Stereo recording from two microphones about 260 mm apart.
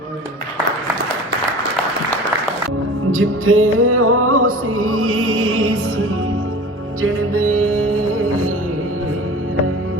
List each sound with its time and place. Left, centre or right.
3.1 s music: right
7.0 s music: right